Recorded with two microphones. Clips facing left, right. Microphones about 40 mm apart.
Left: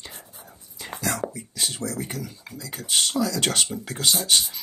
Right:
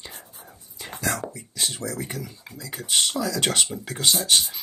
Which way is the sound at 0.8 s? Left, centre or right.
Centre.